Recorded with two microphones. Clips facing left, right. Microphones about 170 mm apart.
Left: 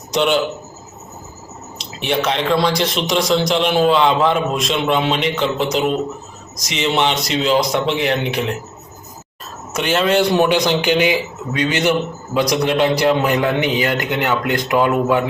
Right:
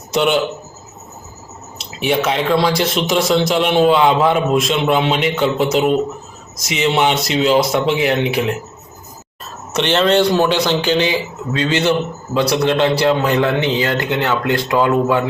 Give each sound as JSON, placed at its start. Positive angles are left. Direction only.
{"t": 0.1, "sound": "a man's voice", "side_deg": -5}
{"t": 1.8, "sound": "speech", "side_deg": -5}
{"t": 9.7, "sound": "a man's voice", "side_deg": 5}